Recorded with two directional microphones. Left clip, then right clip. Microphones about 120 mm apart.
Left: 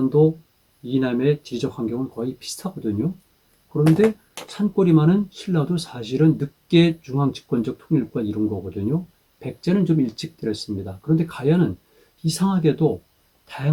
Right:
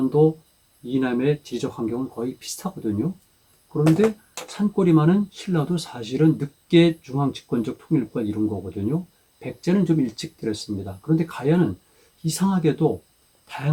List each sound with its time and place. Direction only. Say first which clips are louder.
0.1 s speech: even; 20° left (ahead or behind)